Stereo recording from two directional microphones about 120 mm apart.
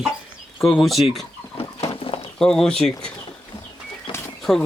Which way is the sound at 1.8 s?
50° left (ahead or behind).